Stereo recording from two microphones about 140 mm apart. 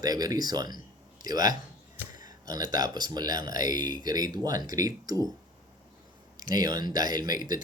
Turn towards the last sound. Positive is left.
turn(degrees=-30)  # may be behind; listen again after turning